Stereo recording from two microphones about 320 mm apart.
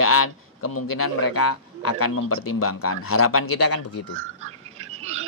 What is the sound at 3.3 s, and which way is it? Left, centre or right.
Speech, left.